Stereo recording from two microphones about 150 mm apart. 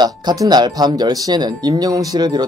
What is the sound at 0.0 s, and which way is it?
Speech, 30° right (ahead or behind).